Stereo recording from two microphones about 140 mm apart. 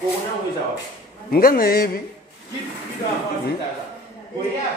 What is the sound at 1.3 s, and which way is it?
Speech, 90° left.